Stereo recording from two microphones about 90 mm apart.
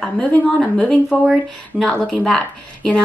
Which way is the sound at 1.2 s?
5° right (ahead or behind).